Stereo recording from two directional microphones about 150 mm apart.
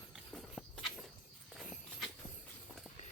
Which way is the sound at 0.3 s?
Centre (ahead or behind).